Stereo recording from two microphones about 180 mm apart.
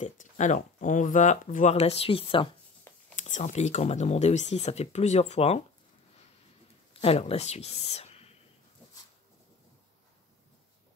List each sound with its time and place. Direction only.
0.0 s speech: 45° left (ahead or behind)
2.9 s a sound: 15° left (ahead or behind)
3.2 s speech: 40° left (ahead or behind)
6.9 s speech: 35° left (ahead or behind)